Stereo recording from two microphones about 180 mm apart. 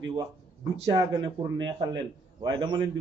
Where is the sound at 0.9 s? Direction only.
25° right (ahead or behind).